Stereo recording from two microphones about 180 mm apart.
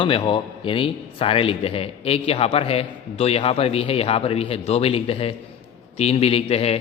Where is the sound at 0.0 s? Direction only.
25° left (ahead or behind).